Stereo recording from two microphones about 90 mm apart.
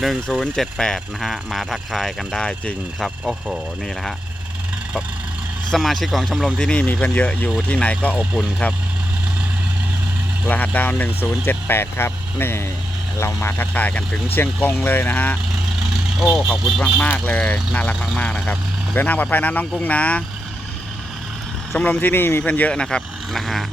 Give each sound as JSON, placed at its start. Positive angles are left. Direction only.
{"t": 0.0, "sound": "speech", "side_deg": 0}
{"t": 5.7, "sound": "speech", "side_deg": 5}
{"t": 6.6, "sound": "speech", "side_deg": 10}
{"t": 8.2, "sound": "speech", "side_deg": -10}
{"t": 10.5, "sound": "speech", "side_deg": 20}
{"t": 15.9, "sound": "vehicle", "side_deg": -5}
{"t": 16.5, "sound": "speech", "side_deg": 0}
{"t": 21.8, "sound": "speech", "side_deg": 20}